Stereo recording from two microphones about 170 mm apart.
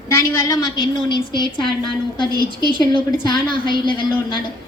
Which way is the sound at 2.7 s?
30° left (ahead or behind).